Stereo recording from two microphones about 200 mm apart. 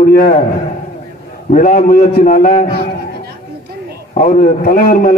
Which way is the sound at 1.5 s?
40° left (ahead or behind).